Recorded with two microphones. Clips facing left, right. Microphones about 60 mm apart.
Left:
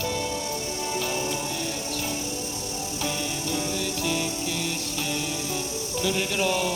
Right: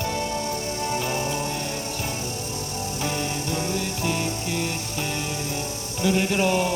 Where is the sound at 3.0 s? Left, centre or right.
Right.